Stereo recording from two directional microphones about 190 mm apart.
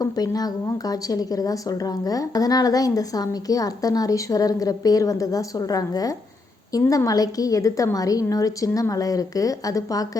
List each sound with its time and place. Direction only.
0.0 s a woman's voice: 20° left (ahead or behind)